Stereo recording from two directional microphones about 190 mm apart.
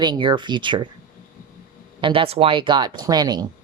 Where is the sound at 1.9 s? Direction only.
25° right (ahead or behind).